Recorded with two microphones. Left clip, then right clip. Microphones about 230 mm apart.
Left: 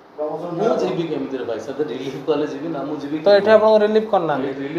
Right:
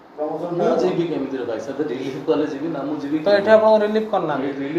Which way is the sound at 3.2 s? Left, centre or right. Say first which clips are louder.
Left 2 dB; left.